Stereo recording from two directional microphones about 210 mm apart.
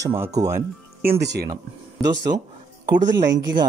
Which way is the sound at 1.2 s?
55° right (ahead or behind).